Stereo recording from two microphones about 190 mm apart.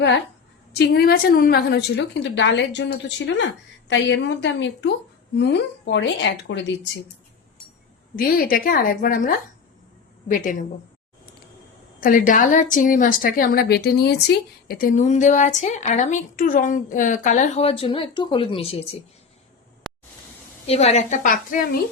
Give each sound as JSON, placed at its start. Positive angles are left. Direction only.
{"t": 0.8, "sound": "a woman's voice", "side_deg": 55}
{"t": 8.1, "sound": "a woman's voice", "side_deg": 50}
{"t": 11.9, "sound": "a woman's voice", "side_deg": 45}
{"t": 20.7, "sound": "a woman's voice", "side_deg": 35}